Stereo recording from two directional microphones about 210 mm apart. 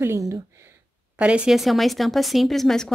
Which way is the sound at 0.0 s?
15° right (ahead or behind).